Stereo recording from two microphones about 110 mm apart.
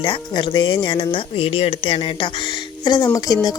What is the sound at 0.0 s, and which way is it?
Speech, 45° left (ahead or behind).